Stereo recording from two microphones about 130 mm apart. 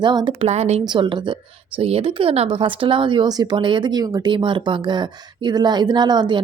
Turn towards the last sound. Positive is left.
turn(degrees=-35)  # may be behind; listen again after turning